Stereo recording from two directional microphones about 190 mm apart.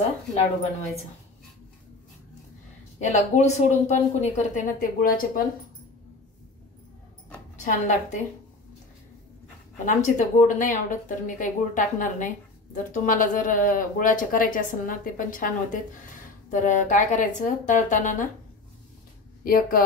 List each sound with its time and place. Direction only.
3.0 s speech: 40° left (ahead or behind)
7.5 s speech: 40° left (ahead or behind)
9.8 s speech: 40° left (ahead or behind)
19.4 s speech: 50° left (ahead or behind)